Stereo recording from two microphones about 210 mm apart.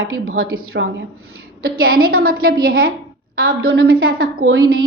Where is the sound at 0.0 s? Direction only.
75° right (ahead or behind).